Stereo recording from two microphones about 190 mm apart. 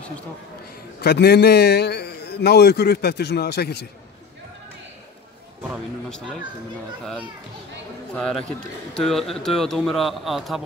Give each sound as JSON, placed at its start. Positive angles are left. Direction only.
{"t": 1.0, "sound": "a man's voice", "side_deg": 60}
{"t": 6.0, "sound": "a man's voice", "side_deg": 5}
{"t": 8.1, "sound": "a man's voice", "side_deg": 5}